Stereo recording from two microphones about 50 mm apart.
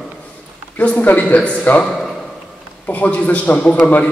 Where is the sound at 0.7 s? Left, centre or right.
Left.